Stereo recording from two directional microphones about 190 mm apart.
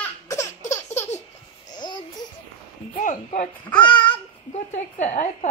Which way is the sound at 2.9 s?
40° left (ahead or behind).